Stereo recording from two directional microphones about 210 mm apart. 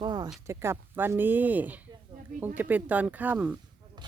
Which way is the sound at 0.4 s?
10° right (ahead or behind).